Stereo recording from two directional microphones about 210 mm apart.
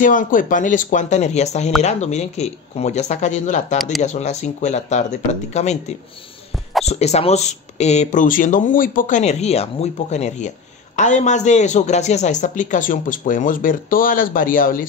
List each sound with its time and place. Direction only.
0.0 s speech: 40° left (ahead or behind)